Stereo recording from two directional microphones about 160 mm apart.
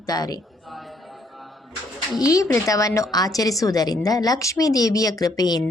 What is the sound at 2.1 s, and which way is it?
Speech, 20° left (ahead or behind).